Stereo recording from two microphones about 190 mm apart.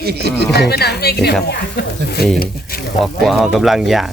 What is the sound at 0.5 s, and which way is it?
A woman's voice, 60° left (ahead or behind).